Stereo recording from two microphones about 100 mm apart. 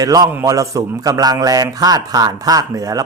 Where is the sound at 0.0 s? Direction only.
40° right (ahead or behind).